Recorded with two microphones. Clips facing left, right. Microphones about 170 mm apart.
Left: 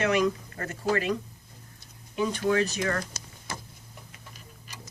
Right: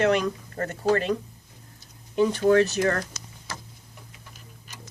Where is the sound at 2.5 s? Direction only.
50° right (ahead or behind).